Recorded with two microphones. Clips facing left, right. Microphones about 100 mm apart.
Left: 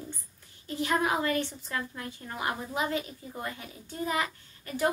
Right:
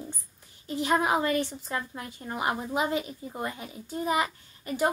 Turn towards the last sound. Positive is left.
turn(degrees=-20)  # may be behind; listen again after turning